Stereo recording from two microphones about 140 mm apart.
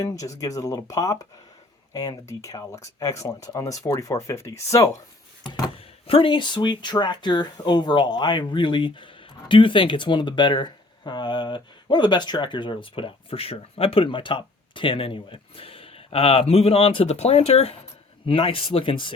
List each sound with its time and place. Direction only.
0.0 s speech: 25° left (ahead or behind)
5.4 s speech: 35° left (ahead or behind)